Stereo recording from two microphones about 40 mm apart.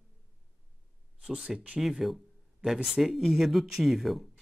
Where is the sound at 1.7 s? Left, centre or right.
Centre.